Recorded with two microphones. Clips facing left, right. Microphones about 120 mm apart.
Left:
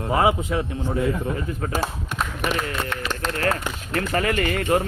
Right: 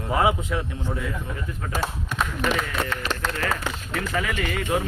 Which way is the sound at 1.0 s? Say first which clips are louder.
Left 7 dB; 45° left (ahead or behind).